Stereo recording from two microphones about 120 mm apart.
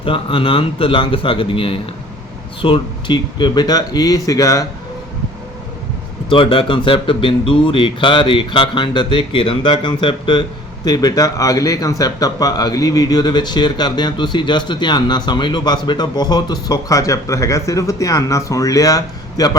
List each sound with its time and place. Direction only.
0.0 s speech: 50° left (ahead or behind); by 4.6 s 30° left (ahead or behind)
6.2 s speech: 45° left (ahead or behind)